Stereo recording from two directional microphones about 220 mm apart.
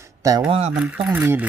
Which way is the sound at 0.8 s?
5° right (ahead or behind).